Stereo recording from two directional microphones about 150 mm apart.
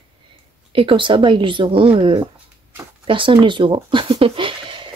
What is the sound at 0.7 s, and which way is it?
Speech, 35° right (ahead or behind).